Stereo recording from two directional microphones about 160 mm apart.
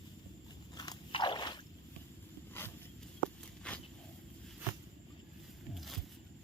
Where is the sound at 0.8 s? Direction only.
25° left (ahead or behind).